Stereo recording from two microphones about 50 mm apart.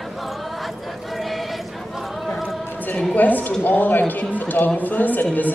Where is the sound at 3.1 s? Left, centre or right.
Left.